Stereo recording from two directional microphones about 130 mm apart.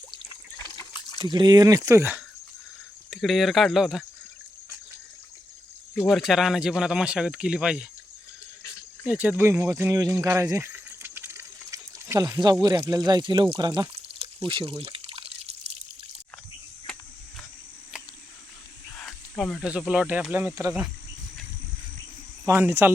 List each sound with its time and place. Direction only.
0.6 s water: 35° left (ahead or behind)
1.2 s speech: 35° right (ahead or behind); by 2.2 s 20° right (ahead or behind)
3.1 s speech: centre (ahead or behind)
6.1 s speech: centre (ahead or behind)
9.0 s speech: 10° right (ahead or behind)
10.7 s a sound: 15° right (ahead or behind)
12.6 s speech: 30° right (ahead or behind); by 15.5 s 50° right (ahead or behind)
18.9 s speech: centre (ahead or behind); by 20.7 s 20° right (ahead or behind)
22.4 s speech: 20° right (ahead or behind)